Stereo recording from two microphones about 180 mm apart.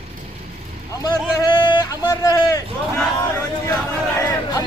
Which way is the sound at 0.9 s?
20° left (ahead or behind).